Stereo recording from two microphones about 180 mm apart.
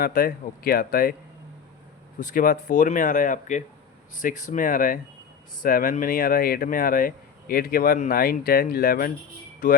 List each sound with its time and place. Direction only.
0.0 s speech: 55° left (ahead or behind)
2.1 s speech: 45° left (ahead or behind)